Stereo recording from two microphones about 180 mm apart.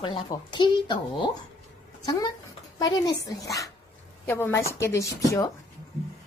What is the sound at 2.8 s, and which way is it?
Speech, 20° left (ahead or behind).